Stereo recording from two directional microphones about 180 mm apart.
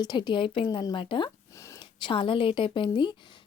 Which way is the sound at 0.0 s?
25° left (ahead or behind).